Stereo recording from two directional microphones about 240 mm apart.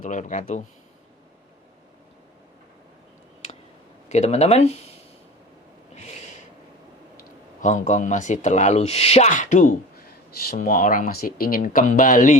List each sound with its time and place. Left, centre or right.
0.0 s speech: left
4.1 s speech: left
5.9 s snort: left
7.6 s speech: left